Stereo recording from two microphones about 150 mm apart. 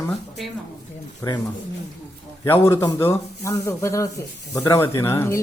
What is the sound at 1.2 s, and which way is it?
Speech, 20° left (ahead or behind).